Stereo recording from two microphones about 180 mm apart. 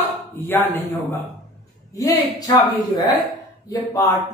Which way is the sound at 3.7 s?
20° left (ahead or behind).